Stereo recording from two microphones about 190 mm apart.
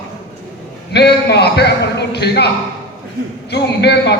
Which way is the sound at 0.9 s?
60° left (ahead or behind).